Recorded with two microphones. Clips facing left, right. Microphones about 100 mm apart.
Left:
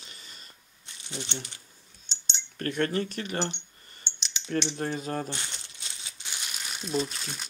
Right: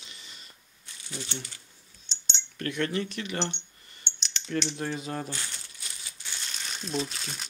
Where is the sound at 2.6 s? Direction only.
40° left (ahead or behind).